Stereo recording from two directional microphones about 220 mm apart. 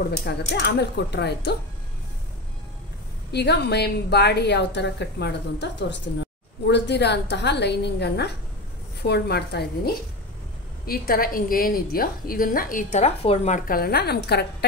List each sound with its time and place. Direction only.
0.2 s a woman's voice: 50° left (ahead or behind)
3.3 s a woman's voice: 50° left (ahead or behind)
10.9 s a woman's voice: 40° left (ahead or behind)
13.7 s a woman's voice: 45° left (ahead or behind)